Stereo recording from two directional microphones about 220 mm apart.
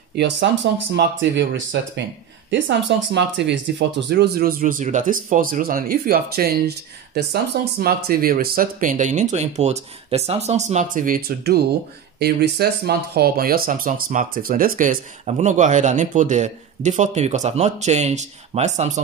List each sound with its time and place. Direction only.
0.1 s speech: 50° right (ahead or behind); by 18.9 s 30° right (ahead or behind)